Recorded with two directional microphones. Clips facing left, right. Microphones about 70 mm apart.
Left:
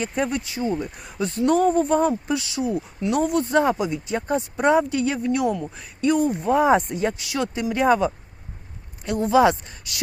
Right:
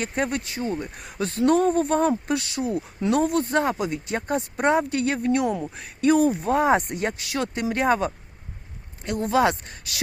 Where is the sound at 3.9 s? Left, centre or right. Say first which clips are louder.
Left 2 dB; right.